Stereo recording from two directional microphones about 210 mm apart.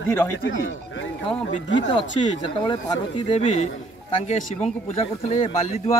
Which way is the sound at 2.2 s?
25° left (ahead or behind).